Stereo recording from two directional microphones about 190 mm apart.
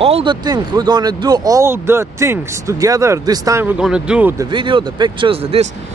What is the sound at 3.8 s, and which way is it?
Speech, 5° right (ahead or behind).